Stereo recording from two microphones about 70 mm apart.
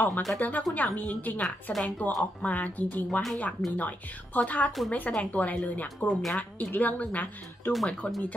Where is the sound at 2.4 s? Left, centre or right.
Left.